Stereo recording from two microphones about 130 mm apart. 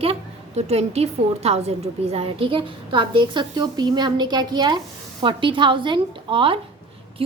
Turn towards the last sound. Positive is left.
turn(degrees=-40)  # may be behind; listen again after turning